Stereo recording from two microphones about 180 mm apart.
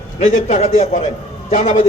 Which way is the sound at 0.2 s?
45° left (ahead or behind).